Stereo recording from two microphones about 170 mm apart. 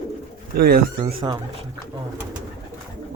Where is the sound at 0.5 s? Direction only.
65° right (ahead or behind).